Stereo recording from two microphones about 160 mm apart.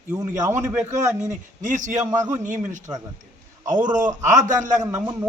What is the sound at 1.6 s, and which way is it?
Speech, 50° right (ahead or behind).